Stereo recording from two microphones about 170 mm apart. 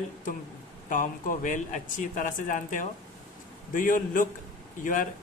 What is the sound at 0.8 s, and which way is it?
A man's voice, 50° left (ahead or behind).